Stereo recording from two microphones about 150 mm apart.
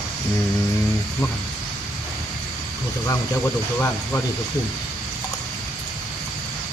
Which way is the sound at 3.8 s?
15° left (ahead or behind).